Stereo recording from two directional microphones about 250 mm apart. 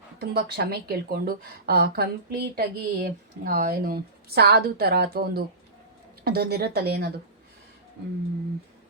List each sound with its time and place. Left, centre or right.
0.2 s speech: right